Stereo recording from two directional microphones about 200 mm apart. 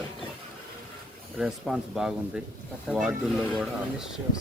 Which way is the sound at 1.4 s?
Centre (ahead or behind).